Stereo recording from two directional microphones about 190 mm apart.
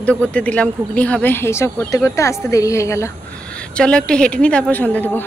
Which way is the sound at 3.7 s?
5° left (ahead or behind).